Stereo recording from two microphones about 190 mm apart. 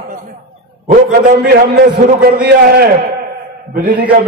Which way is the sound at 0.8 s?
45° right (ahead or behind).